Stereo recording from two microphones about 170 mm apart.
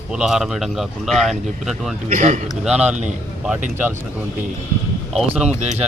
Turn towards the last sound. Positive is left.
turn(degrees=-45)  # may be behind; listen again after turning